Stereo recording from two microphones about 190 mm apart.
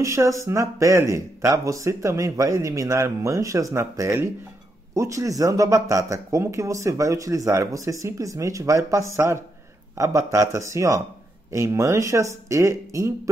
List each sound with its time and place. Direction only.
0.0 s speech: 15° right (ahead or behind)